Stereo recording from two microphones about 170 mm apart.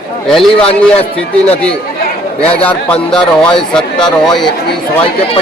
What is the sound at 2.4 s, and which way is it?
Speech, 35° left (ahead or behind).